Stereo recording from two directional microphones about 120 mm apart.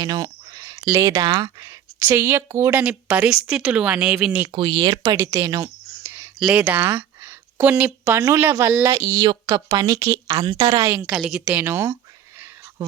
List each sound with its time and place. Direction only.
0.0 s a sound: 30° right (ahead or behind)
0.9 s a woman's voice: 25° right (ahead or behind)
2.0 s a woman's voice: 15° right (ahead or behind)
2.8 s speech: 10° right (ahead or behind)
4.5 s a woman's voice: 40° right (ahead or behind)
5.1 s a woman's voice: 20° right (ahead or behind)
6.0 s a woman's voice: 15° right (ahead or behind)
9.2 s a woman's voice: 40° right (ahead or behind)
11.0 s a woman's voice: 5° right (ahead or behind)
11.6 s a woman's voice: 20° right (ahead or behind)